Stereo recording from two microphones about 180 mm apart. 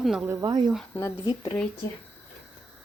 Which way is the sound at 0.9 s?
20° left (ahead or behind).